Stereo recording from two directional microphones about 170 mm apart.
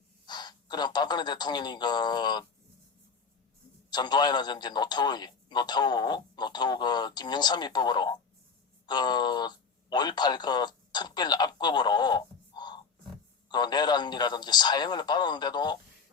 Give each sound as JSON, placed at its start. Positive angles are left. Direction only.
{"t": 0.3, "sound": "speech", "side_deg": 25}
{"t": 3.8, "sound": "a man's voice", "side_deg": 25}